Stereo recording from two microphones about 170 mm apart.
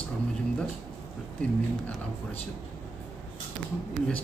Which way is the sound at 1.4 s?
10° left (ahead or behind).